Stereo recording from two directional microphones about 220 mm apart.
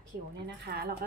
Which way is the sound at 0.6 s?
45° right (ahead or behind).